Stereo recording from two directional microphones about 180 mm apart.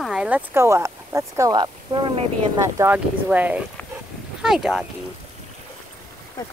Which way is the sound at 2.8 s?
10° right (ahead or behind).